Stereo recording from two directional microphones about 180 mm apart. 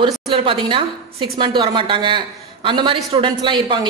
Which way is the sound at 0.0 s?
30° right (ahead or behind).